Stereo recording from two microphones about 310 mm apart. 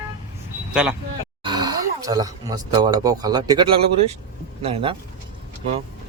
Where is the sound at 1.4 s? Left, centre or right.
Centre.